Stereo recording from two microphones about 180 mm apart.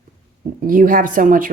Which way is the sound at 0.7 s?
50° right (ahead or behind).